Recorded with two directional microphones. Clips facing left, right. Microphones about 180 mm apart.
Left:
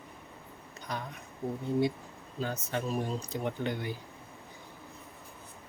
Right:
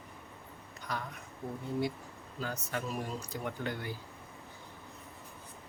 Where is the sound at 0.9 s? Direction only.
20° left (ahead or behind).